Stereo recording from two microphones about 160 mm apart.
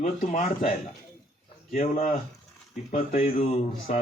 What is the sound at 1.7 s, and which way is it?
Speech, 45° left (ahead or behind).